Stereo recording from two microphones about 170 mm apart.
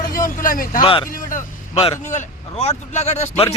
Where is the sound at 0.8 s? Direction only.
30° left (ahead or behind).